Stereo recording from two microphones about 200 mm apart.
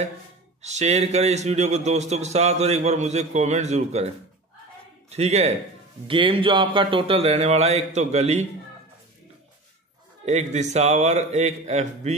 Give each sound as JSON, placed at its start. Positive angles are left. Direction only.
{"t": 0.6, "sound": "a man's voice", "side_deg": -35}
{"t": 5.1, "sound": "a man's voice", "side_deg": -30}
{"t": 10.2, "sound": "a man's voice", "side_deg": -35}